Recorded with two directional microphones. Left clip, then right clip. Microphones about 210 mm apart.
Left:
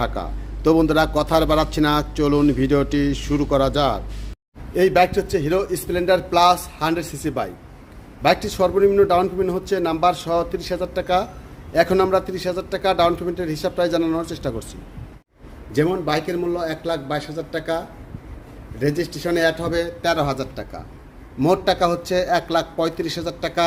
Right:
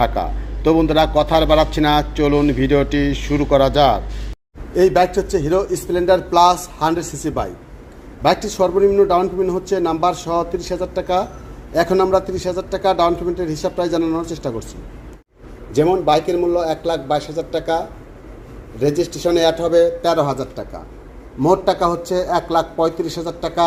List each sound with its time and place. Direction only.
0.0 s a man's voice: 15° left (ahead or behind)
15.8 s a man's voice: 10° left (ahead or behind)
16.3 s a man's voice: 45° left (ahead or behind)
18.9 s speech: 40° left (ahead or behind)
19.6 s a man's voice: 10° left (ahead or behind)